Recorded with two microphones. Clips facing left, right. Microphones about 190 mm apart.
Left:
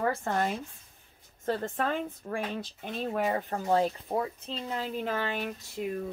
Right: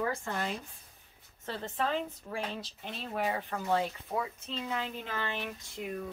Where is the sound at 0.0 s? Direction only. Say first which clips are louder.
Left 5 dB; 55° left (ahead or behind).